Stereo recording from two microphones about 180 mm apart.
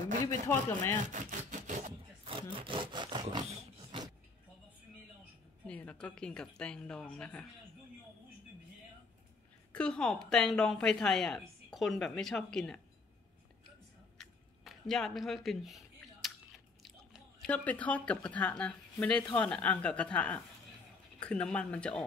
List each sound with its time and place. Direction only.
0.2 s speech: 15° left (ahead or behind)
1.0 s rub: 45° right (ahead or behind)
2.2 s wood: 30° right (ahead or behind)
5.7 s a woman's voice: 5° left (ahead or behind)
9.7 s a woman's voice: 5° left (ahead or behind)
14.1 s chewing: centre (ahead or behind)
17.5 s speech: 10° left (ahead or behind)